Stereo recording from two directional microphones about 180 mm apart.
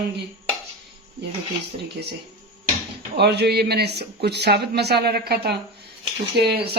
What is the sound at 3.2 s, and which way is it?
Speech, 65° right (ahead or behind).